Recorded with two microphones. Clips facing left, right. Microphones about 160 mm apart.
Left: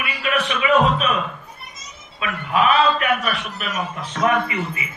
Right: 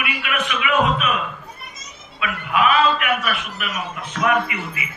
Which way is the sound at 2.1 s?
35° left (ahead or behind).